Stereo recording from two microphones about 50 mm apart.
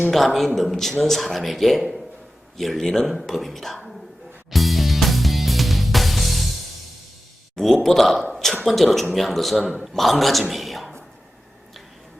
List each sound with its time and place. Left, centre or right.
0.1 s a man's voice: centre
4.5 s music: centre
7.5 s a man's voice: centre
8.2 s a sound: centre
8.6 s a man's voice: centre
10.5 s a sound: centre